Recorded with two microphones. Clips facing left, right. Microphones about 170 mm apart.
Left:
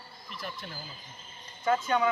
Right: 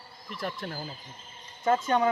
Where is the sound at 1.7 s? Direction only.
35° right (ahead or behind).